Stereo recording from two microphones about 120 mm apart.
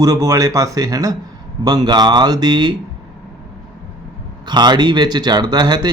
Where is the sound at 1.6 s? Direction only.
35° right (ahead or behind).